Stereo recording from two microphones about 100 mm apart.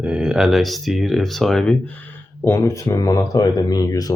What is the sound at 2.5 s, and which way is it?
Speech, 30° left (ahead or behind).